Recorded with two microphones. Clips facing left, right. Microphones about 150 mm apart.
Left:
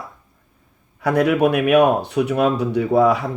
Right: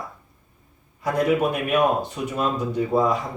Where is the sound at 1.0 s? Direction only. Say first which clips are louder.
Left 4 dB; 70° left (ahead or behind).